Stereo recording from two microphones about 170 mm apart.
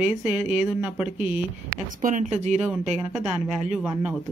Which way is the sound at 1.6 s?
50° right (ahead or behind).